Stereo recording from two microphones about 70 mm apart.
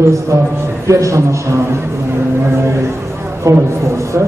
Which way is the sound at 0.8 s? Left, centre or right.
Right.